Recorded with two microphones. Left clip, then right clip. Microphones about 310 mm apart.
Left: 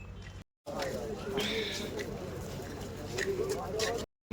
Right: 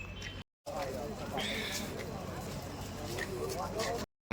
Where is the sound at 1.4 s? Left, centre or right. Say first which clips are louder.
Left 2 dB; centre.